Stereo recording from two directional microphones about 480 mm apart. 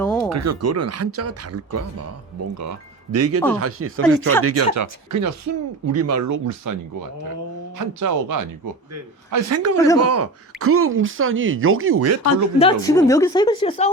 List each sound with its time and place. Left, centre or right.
0.0 s a sound: centre
0.3 s speech: right
7.8 s speech: right
9.7 s a woman's voice: centre
10.0 s speech: right
12.5 s a woman's voice: centre